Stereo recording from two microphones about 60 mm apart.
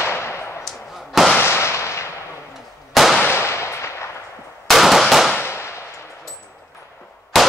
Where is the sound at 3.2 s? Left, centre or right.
Left.